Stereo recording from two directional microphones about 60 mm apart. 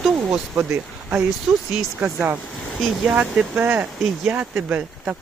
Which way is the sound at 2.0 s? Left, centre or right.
Right.